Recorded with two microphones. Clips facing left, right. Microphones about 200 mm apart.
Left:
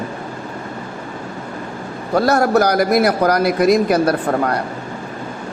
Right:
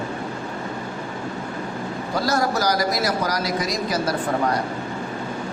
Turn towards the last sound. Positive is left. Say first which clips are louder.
# left 5 dB
turn(degrees=60)  # may be behind; listen again after turning